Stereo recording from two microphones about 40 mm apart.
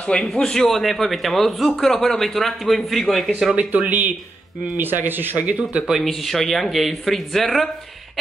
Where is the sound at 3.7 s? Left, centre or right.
Right.